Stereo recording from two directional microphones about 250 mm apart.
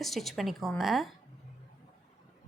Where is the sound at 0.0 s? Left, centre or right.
Centre.